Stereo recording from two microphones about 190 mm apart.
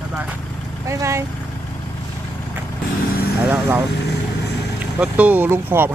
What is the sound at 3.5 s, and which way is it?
Speech, 10° right (ahead or behind).